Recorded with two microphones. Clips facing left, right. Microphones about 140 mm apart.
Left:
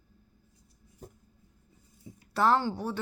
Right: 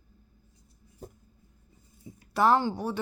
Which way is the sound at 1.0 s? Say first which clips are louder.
Right 3 dB; 30° right (ahead or behind).